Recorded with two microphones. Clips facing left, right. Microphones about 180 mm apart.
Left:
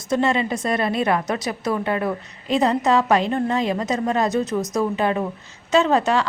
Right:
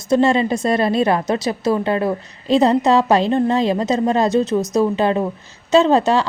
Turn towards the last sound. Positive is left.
turn(degrees=-30)  # may be behind; listen again after turning